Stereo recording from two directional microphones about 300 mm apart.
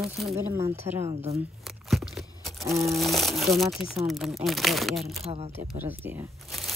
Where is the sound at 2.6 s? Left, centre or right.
Centre.